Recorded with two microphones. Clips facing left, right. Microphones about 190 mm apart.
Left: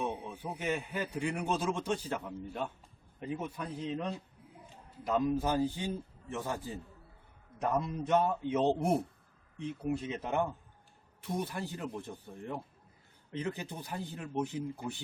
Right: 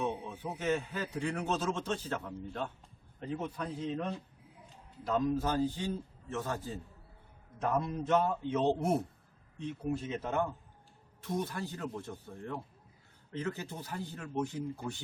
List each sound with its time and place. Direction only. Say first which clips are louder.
0.0 s a man's voice: right 1 dB; 10° left (ahead or behind)